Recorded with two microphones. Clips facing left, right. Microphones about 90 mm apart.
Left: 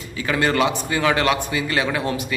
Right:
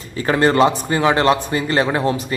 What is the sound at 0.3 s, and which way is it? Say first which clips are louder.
A man's voice: right 5 dB; 35° right (ahead or behind).